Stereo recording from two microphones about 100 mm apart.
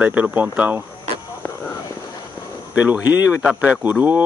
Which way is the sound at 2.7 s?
10° right (ahead or behind).